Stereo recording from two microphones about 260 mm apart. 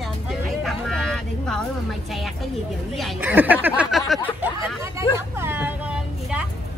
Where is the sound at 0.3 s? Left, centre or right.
Centre.